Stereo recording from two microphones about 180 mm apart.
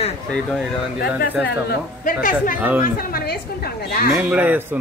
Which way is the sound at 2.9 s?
60° left (ahead or behind).